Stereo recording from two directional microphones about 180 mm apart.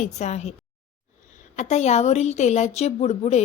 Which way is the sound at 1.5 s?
40° left (ahead or behind).